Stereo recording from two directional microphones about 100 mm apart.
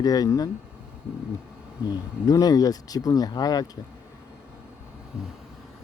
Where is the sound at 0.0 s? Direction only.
40° left (ahead or behind).